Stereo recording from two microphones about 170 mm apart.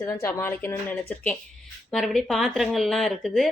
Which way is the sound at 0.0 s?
15° left (ahead or behind).